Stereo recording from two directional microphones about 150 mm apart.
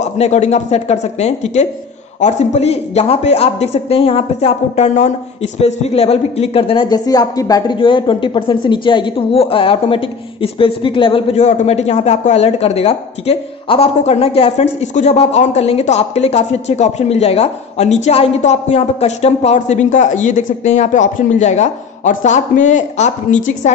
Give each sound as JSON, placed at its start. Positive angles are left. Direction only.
{"t": 0.0, "sound": "speech", "side_deg": 50}